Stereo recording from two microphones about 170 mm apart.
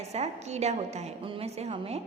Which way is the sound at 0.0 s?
40° right (ahead or behind).